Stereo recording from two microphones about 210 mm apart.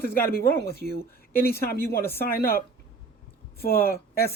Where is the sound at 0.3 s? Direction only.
45° left (ahead or behind).